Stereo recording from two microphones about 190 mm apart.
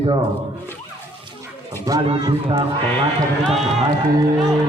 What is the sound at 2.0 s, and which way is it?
Speech, 30° right (ahead or behind).